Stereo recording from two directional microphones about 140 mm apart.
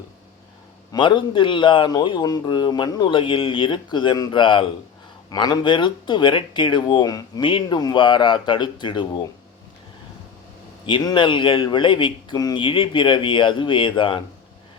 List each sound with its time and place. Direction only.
0.9 s speech: 35° left (ahead or behind)
10.8 s speech: 35° left (ahead or behind)